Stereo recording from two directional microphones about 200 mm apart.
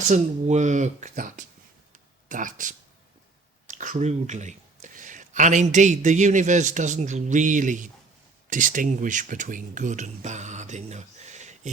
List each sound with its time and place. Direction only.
0.1 s speech: 35° right (ahead or behind)
1.9 s a sound: 40° right (ahead or behind)
3.7 s speech: 40° right (ahead or behind)